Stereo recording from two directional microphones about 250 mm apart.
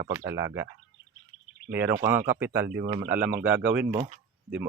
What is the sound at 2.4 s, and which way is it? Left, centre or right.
Speech, centre.